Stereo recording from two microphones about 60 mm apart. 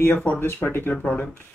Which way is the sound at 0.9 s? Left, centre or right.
Centre.